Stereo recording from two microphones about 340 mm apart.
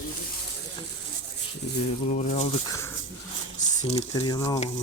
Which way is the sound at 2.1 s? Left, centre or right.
Centre.